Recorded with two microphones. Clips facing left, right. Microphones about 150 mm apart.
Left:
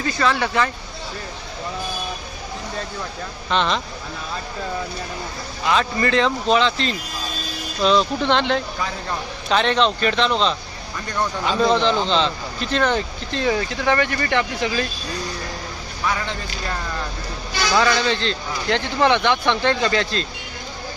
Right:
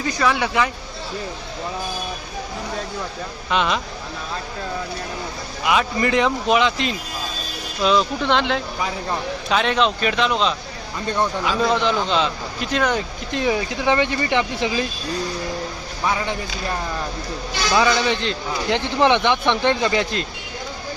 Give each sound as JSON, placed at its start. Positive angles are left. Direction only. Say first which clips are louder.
{"t": 0.0, "sound": "speech", "louder": "even", "side_deg": -10}
{"t": 3.5, "sound": "speech", "louder": "even", "side_deg": -5}
{"t": 5.6, "sound": "speech", "louder": "even", "side_deg": -15}
{"t": 16.0, "sound": "speech", "louder": "right 2 dB", "side_deg": -15}
{"t": 17.7, "sound": "speech", "louder": "right 1 dB", "side_deg": -15}